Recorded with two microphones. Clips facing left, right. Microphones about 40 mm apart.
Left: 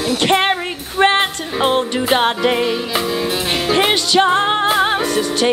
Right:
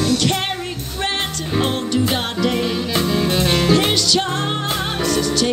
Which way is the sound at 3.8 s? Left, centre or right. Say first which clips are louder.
Left 4 dB; left.